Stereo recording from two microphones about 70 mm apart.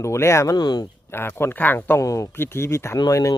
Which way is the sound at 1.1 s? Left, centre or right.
Left.